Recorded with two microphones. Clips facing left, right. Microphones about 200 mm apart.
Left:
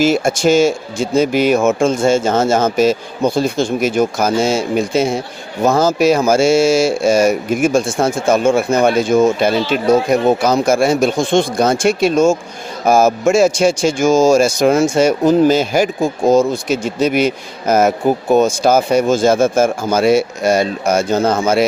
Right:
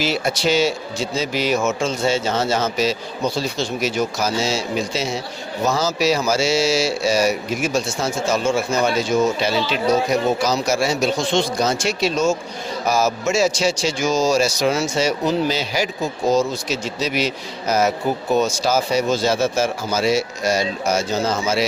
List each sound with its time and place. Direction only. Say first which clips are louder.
0.0 s speech: left 8 dB; 50° left (ahead or behind)